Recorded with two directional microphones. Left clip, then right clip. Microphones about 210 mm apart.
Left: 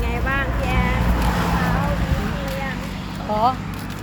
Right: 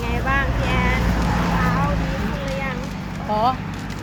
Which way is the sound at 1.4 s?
50° left (ahead or behind).